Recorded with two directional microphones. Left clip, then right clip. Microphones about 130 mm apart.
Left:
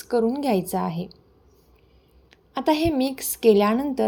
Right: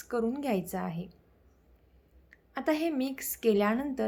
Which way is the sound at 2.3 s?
25° left (ahead or behind).